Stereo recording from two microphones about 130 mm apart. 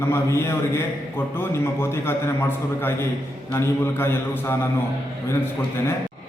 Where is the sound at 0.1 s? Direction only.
20° left (ahead or behind).